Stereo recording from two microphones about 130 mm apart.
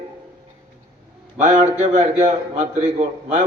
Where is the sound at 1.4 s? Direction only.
55° right (ahead or behind).